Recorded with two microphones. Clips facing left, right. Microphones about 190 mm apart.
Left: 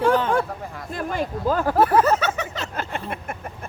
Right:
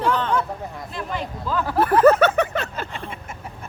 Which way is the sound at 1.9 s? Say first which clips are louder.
Right 5 dB; 55° right (ahead or behind).